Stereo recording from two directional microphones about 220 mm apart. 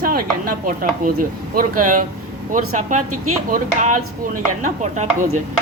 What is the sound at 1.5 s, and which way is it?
Speech, 35° right (ahead or behind).